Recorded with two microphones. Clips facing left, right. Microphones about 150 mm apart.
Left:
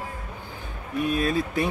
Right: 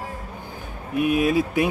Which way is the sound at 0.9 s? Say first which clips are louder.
Right 4 dB; 10° right (ahead or behind).